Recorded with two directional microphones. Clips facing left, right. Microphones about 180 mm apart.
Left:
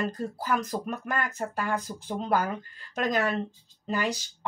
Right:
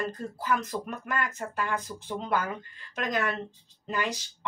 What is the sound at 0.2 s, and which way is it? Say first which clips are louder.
Speech: left 1 dB; 40° left (ahead or behind).